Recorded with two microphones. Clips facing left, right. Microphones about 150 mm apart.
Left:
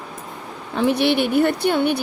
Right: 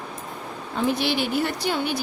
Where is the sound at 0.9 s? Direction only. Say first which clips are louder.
Left 6 dB; 65° left (ahead or behind).